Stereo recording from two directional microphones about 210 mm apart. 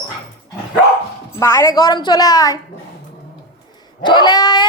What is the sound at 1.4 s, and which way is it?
A woman's voice, 15° left (ahead or behind).